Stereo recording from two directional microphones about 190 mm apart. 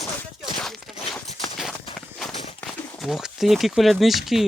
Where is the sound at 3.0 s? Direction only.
Centre (ahead or behind).